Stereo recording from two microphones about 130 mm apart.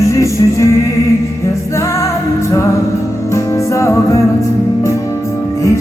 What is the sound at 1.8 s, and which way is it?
Music, 20° left (ahead or behind).